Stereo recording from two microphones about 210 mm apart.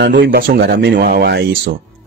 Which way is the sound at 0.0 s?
55° right (ahead or behind).